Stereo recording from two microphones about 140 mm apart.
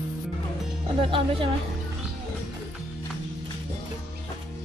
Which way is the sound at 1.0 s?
40° right (ahead or behind).